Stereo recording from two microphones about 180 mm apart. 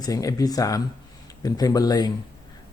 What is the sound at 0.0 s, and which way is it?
Speech, 20° left (ahead or behind).